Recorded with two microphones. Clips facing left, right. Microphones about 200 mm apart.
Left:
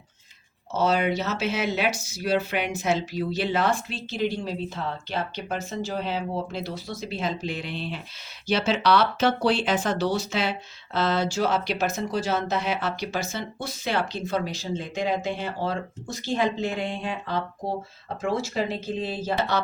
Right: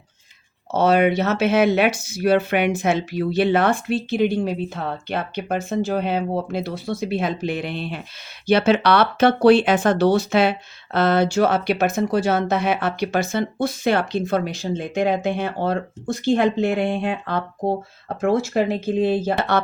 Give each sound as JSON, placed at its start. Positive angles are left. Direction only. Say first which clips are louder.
{"t": 0.7, "sound": "speech", "louder": "right 6 dB", "side_deg": -60}